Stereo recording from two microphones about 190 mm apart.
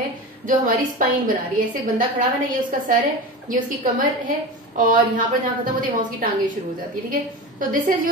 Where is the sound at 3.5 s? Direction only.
45° right (ahead or behind).